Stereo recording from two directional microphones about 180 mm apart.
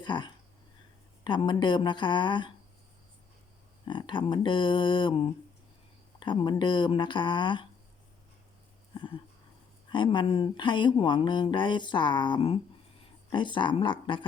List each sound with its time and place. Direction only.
0.0 s speech: 25° left (ahead or behind)
3.8 s speech: 25° left (ahead or behind)
9.9 s speech: 25° left (ahead or behind)